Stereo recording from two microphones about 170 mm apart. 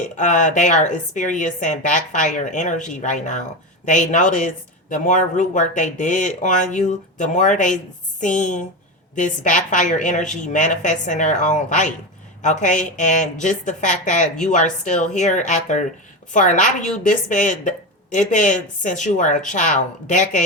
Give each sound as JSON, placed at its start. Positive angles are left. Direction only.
{"t": 0.2, "sound": "a woman's voice", "side_deg": 45}